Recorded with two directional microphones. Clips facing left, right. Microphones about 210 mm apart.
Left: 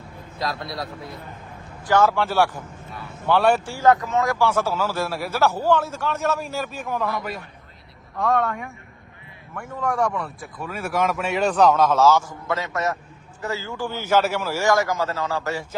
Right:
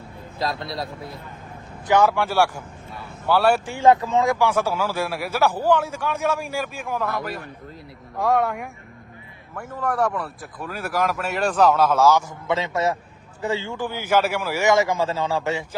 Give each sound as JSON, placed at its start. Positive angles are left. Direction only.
{"t": 0.3, "sound": "a man's voice", "side_deg": -25}
{"t": 0.7, "sound": "speech", "side_deg": 0}
{"t": 1.9, "sound": "speech", "side_deg": -15}
{"t": 3.7, "sound": "speech", "side_deg": -25}
{"t": 8.2, "sound": "speech", "side_deg": 0}
{"t": 12.5, "sound": "a man's voice", "side_deg": -25}